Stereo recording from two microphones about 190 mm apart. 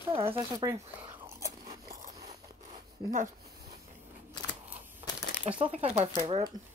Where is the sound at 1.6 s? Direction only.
50° right (ahead or behind).